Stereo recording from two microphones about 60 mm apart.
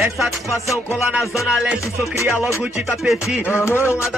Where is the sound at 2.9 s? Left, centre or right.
Centre.